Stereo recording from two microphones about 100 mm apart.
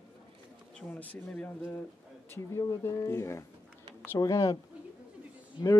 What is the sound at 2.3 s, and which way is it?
Speech, 30° left (ahead or behind).